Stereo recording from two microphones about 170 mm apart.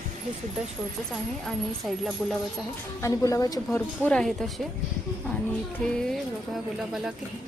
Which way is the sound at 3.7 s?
10° left (ahead or behind).